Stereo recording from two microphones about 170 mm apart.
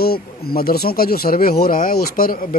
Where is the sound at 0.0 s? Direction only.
65° left (ahead or behind).